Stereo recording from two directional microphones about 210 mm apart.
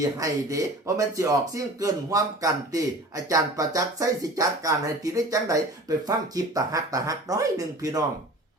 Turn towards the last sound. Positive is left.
turn(degrees=-15)  # may be behind; listen again after turning